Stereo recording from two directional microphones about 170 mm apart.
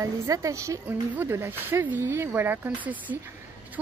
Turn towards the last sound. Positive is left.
turn(degrees=-10)  # may be behind; listen again after turning